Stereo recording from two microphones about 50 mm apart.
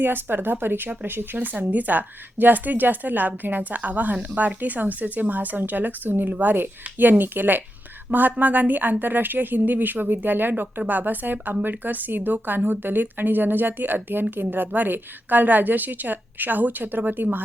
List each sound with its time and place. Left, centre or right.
0.0 s speech: right